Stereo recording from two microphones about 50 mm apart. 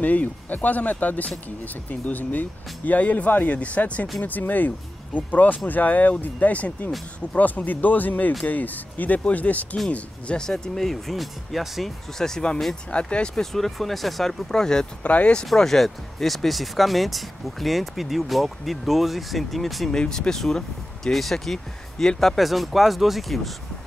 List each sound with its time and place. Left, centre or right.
0.0 s speech: left
10.4 s speech: centre
12.2 s speech: centre
12.9 s speech: left
13.3 s speech: centre
15.0 s speech: left
15.4 s speech: centre
19.9 s speech: centre